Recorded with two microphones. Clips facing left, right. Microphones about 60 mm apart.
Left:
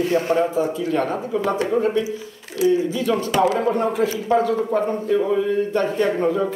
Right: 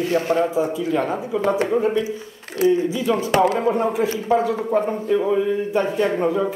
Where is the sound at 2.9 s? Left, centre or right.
Centre.